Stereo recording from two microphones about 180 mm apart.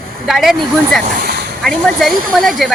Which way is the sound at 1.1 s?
55° right (ahead or behind).